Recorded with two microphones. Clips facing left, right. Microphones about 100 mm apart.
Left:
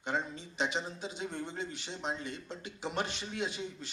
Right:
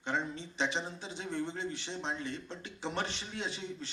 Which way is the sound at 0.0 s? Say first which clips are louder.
Even; 15° left (ahead or behind).